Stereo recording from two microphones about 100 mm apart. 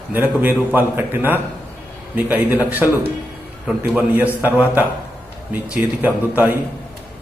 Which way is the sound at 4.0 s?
20° right (ahead or behind).